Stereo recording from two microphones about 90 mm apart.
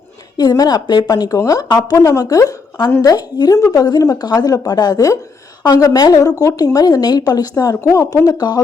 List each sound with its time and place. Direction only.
0.3 s speech: 50° left (ahead or behind)